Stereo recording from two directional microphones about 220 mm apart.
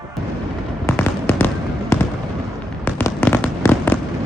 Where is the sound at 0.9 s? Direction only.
10° left (ahead or behind).